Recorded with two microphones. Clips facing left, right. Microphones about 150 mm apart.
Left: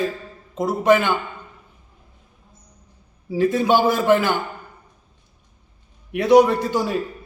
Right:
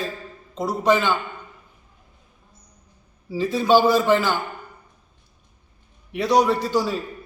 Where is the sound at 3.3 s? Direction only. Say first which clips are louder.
Left 5 dB; 55° left (ahead or behind).